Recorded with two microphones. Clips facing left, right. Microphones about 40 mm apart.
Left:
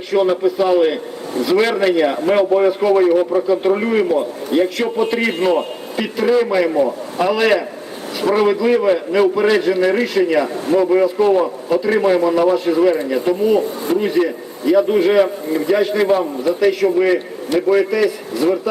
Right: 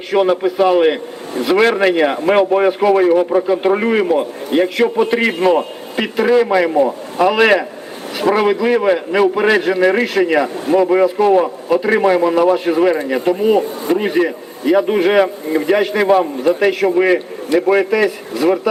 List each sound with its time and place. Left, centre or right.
0.3 s a man's voice: right
11.8 s a man's voice: right